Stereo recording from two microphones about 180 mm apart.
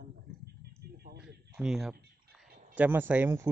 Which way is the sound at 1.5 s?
5° right (ahead or behind).